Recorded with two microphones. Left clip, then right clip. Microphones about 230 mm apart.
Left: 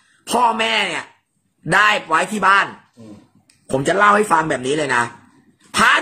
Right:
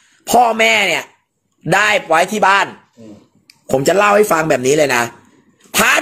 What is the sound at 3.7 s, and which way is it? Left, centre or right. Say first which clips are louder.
Speech: right 2 dB; right.